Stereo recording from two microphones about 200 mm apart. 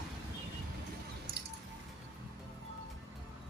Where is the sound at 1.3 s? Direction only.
50° right (ahead or behind).